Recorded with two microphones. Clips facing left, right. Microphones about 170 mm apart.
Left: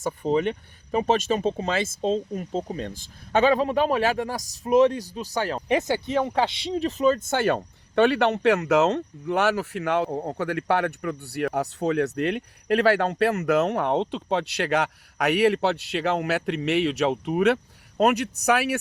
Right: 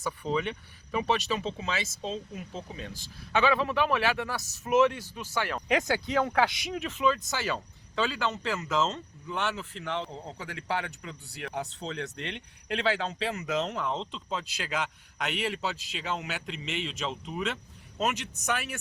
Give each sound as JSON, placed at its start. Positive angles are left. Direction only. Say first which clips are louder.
{"t": 0.0, "sound": "speech", "louder": "left 7 dB", "side_deg": 45}
{"t": 5.5, "sound": "speech", "louder": "left 3 dB", "side_deg": 25}